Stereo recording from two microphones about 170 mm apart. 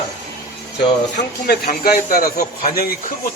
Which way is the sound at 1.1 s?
65° left (ahead or behind).